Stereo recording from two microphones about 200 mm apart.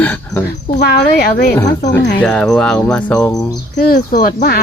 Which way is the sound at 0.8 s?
50° left (ahead or behind).